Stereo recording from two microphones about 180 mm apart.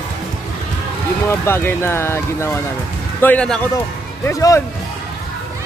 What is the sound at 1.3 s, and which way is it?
Speech, 15° left (ahead or behind).